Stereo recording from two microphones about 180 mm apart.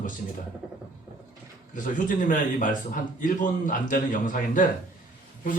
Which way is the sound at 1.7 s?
45° left (ahead or behind).